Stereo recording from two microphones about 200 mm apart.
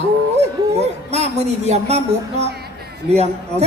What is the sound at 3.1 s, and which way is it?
Speech, 30° right (ahead or behind).